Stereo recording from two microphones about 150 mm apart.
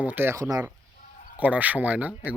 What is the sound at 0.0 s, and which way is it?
Speech, 10° right (ahead or behind).